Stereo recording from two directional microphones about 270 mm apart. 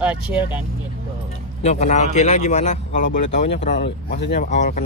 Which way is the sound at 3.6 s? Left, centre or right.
Left.